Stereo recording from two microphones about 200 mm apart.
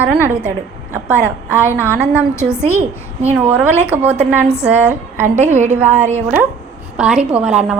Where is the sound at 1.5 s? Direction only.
10° left (ahead or behind).